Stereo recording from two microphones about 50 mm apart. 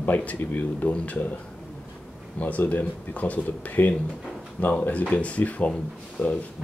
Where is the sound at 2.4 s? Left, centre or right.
Left.